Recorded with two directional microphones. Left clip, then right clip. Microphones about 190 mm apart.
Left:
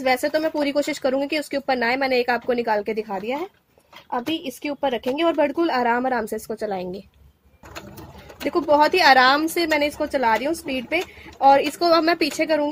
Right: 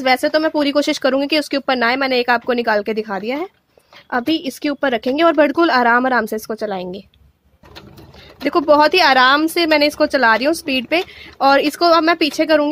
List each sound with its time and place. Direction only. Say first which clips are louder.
0.0 s speech: right 5 dB; 40° right (ahead or behind)
8.5 s speech: right 5 dB; 45° right (ahead or behind)